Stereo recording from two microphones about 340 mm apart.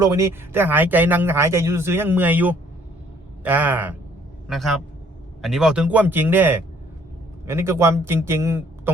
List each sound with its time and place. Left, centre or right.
0.0 s speech: centre